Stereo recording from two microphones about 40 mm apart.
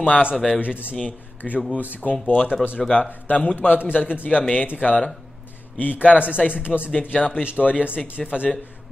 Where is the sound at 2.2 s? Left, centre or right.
Left.